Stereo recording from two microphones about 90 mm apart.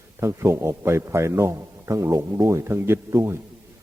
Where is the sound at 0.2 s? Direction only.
30° right (ahead or behind).